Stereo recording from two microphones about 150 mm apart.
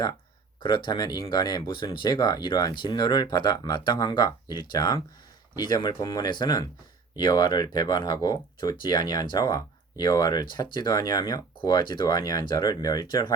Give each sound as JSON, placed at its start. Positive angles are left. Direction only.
{"t": 0.6, "sound": "speech", "side_deg": 30}